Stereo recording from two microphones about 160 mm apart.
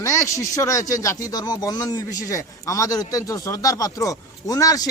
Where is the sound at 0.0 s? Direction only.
20° left (ahead or behind).